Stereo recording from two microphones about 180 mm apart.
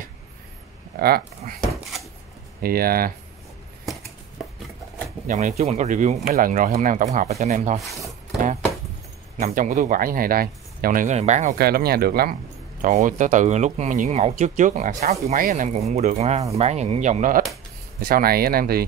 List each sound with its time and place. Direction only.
0.9 s speech: 55° right (ahead or behind)
1.6 s drawer open or close: centre (ahead or behind)
2.6 s speech: 55° right (ahead or behind)
5.2 s speech: 40° right (ahead or behind)
9.4 s speech: 45° right (ahead or behind)
11.5 s speech: 60° right (ahead or behind)
12.8 s speech: 45° right (ahead or behind)